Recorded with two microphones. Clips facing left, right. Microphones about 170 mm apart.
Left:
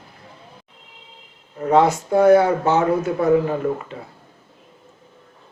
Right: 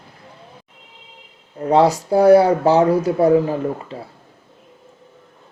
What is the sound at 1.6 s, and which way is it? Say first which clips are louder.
Speech: right 1 dB; 35° right (ahead or behind).